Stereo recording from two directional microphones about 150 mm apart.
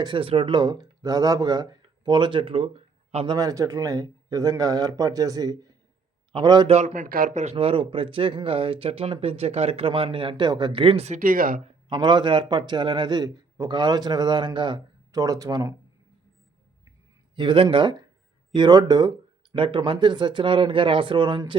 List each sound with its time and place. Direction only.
0.0 s speech: 35° right (ahead or behind)
3.3 s a man's voice: 25° right (ahead or behind)
6.7 s speech: 50° right (ahead or behind)
7.5 s speech: 35° right (ahead or behind)
11.2 s speech: 65° right (ahead or behind)
11.6 s a man's voice: 30° right (ahead or behind)
17.3 s speech: 35° right (ahead or behind)